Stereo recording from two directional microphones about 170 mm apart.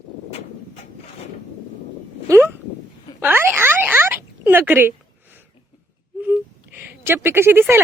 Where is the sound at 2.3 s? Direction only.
20° right (ahead or behind).